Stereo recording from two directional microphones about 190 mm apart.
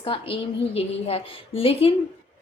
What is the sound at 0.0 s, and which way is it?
A woman's voice, 30° left (ahead or behind).